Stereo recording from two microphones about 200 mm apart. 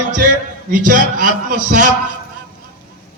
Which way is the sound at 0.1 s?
45° right (ahead or behind).